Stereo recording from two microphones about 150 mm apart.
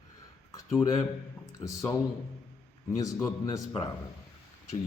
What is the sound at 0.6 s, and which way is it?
Speech, 20° left (ahead or behind).